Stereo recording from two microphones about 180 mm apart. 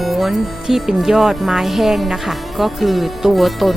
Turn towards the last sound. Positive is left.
turn(degrees=0)  # may be behind; listen again after turning